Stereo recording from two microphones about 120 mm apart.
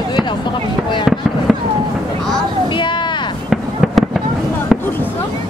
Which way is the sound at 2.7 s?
40° left (ahead or behind).